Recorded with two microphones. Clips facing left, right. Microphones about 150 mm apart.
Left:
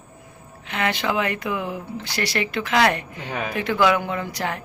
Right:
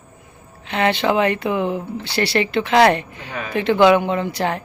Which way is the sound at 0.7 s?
30° right (ahead or behind).